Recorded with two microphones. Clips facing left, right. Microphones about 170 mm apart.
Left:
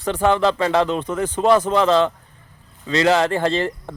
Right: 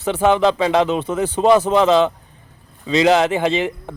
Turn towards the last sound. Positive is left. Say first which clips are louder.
# right 2 dB
turn(degrees=-20)  # may be behind; listen again after turning